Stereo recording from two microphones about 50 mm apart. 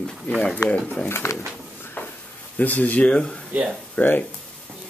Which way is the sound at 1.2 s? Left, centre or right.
Left.